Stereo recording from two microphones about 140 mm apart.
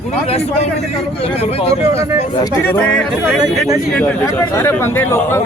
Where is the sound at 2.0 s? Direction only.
20° right (ahead or behind).